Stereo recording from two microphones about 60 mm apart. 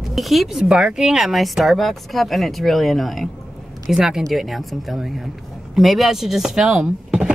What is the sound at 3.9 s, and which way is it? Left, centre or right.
A woman's voice, centre.